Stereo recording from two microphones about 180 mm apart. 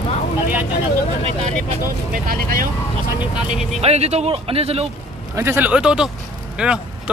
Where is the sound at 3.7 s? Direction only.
35° right (ahead or behind).